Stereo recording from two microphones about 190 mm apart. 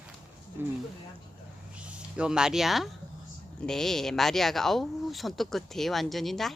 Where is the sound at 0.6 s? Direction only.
10° right (ahead or behind).